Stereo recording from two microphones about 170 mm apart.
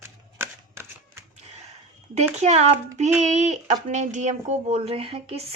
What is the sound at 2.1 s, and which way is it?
A woman's voice, 40° right (ahead or behind).